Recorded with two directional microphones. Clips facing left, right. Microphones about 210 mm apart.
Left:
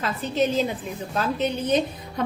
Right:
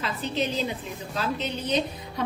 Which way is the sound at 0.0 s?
45° left (ahead or behind).